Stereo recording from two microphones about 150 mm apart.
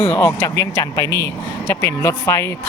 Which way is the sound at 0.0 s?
10° left (ahead or behind).